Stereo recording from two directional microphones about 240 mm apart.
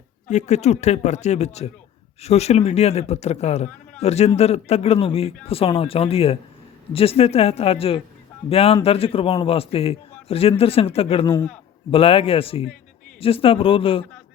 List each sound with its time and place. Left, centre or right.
0.3 s a man's voice: left